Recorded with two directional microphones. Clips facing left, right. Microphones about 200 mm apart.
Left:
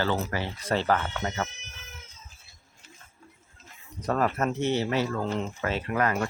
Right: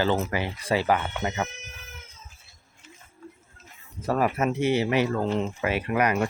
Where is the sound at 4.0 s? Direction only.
5° right (ahead or behind).